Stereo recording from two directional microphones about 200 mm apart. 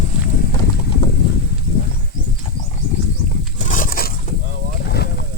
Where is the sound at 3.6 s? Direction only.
40° left (ahead or behind).